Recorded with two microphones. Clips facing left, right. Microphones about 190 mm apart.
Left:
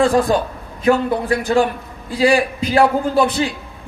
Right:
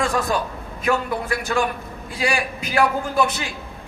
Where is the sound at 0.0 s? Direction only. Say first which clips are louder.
Left 7 dB; 30° left (ahead or behind).